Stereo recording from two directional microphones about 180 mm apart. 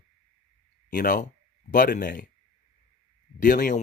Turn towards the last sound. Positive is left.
turn(degrees=50)  # may be behind; listen again after turning